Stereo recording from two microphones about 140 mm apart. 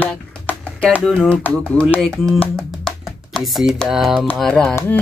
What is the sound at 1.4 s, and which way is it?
Speech, 10° left (ahead or behind).